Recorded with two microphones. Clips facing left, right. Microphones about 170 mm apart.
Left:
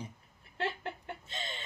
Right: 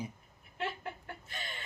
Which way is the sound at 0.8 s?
25° left (ahead or behind).